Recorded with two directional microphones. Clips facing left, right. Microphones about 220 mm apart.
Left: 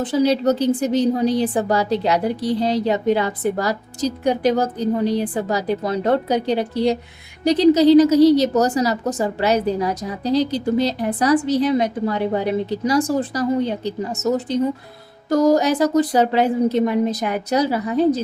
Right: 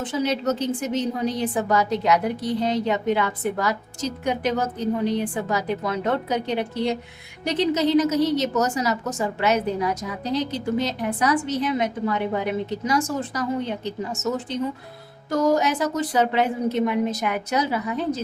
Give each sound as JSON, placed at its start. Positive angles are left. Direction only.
{"t": 0.0, "sound": "a woman's voice", "side_deg": 35}